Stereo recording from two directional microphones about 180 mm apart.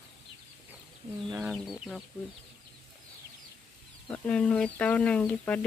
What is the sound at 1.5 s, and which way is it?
Speech, 5° right (ahead or behind).